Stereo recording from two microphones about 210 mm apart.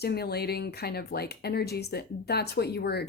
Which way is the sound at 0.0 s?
50° left (ahead or behind).